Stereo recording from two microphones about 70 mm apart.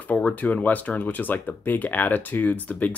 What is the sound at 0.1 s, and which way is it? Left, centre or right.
Speech, centre.